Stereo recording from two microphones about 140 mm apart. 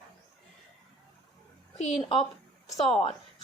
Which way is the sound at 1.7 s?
50° left (ahead or behind).